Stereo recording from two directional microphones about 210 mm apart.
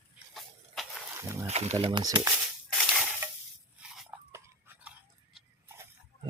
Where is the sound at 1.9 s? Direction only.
20° right (ahead or behind).